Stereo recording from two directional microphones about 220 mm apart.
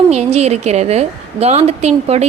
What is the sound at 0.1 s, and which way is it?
A woman's voice, 30° right (ahead or behind).